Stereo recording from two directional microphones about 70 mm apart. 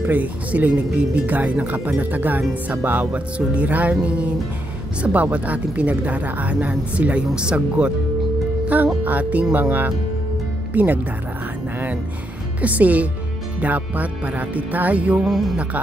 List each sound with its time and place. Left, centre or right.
0.0 s speech: right
9.0 s speech: right
12.6 s speech: right
15.2 s speech: centre